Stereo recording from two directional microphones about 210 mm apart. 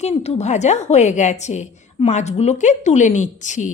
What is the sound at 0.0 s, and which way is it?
A woman's voice, 30° left (ahead or behind).